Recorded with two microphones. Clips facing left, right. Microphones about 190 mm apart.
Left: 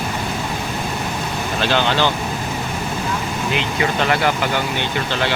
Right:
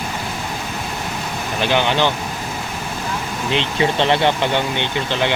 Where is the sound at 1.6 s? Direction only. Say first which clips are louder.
Right 1 dB; 15° right (ahead or behind).